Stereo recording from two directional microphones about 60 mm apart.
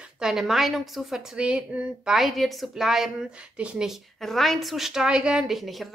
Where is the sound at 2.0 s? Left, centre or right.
Centre.